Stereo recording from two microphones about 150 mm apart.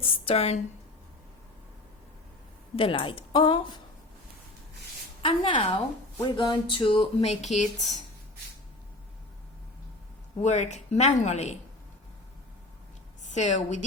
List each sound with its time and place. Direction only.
0.0 s speech: 40° left (ahead or behind)
2.7 s speech: 35° left (ahead or behind)
5.2 s speech: 35° left (ahead or behind); by 8.0 s 50° left (ahead or behind)
10.4 s speech: 50° left (ahead or behind)
13.3 s speech: 50° left (ahead or behind)